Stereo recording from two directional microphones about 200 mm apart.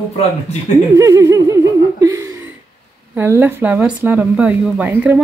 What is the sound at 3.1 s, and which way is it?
Speech, 10° right (ahead or behind).